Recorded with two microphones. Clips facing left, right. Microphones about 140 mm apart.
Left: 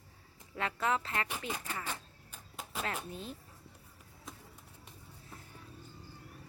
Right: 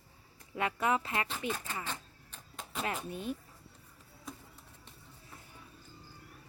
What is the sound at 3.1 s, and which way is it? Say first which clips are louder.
Speech: right 6 dB; 55° right (ahead or behind).